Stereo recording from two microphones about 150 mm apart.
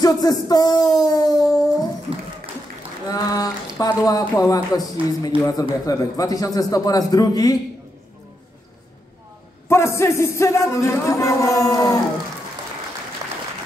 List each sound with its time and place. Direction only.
0.0 s speech: 25° left (ahead or behind)
3.1 s a man's voice: 25° left (ahead or behind)
9.7 s a man's voice: 15° left (ahead or behind)